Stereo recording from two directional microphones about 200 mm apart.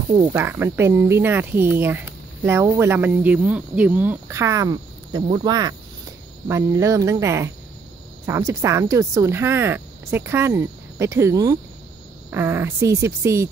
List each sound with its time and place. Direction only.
0.3 s speech: 10° right (ahead or behind)